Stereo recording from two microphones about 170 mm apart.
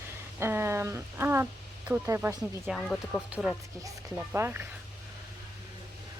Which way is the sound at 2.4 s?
Centre (ahead or behind).